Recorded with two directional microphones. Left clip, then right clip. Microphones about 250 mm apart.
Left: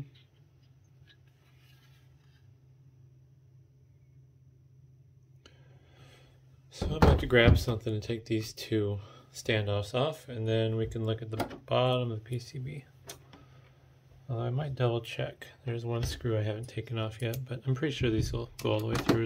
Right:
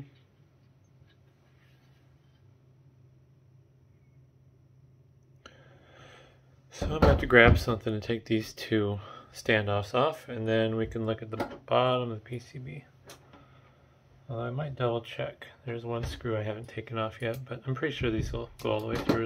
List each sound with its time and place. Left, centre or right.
5.4 s a sound: centre
6.9 s speech: centre; by 12.8 s left
14.2 s speech: left